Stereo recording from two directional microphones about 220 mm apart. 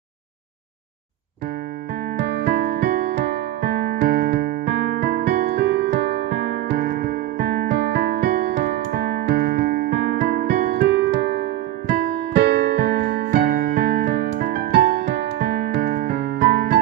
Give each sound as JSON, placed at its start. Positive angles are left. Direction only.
{"t": 2.2, "sound": "music", "side_deg": -45}